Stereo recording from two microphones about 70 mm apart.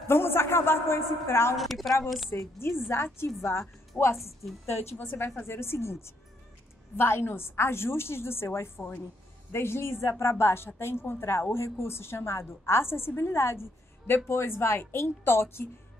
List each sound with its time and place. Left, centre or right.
0.1 s a man's voice: left
1.6 s a woman's voice: centre
2.3 s a woman's voice: left
3.9 s a woman's voice: left